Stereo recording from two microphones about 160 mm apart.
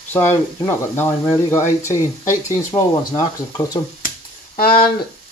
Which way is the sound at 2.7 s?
20° left (ahead or behind).